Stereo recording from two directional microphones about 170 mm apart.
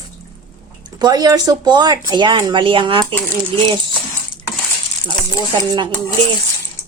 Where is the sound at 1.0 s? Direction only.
25° right (ahead or behind).